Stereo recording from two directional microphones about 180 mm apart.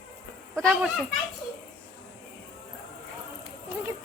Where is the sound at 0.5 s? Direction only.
Centre (ahead or behind).